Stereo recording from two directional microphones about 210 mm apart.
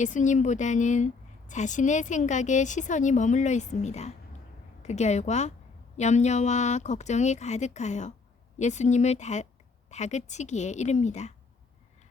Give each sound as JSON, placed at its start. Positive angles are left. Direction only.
{"t": 0.0, "sound": "a woman's voice", "side_deg": 35}